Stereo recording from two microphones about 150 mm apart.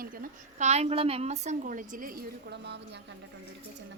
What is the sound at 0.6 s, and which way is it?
A woman's voice, 45° right (ahead or behind).